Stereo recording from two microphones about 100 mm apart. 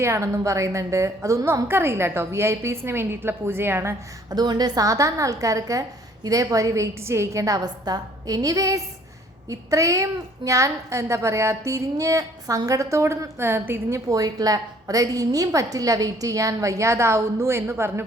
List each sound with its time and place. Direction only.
0.0 s a woman's voice: 30° right (ahead or behind)
4.3 s a woman's voice: 45° right (ahead or behind); by 14.0 s 25° right (ahead or behind)
14.1 s a woman's voice: 40° right (ahead or behind)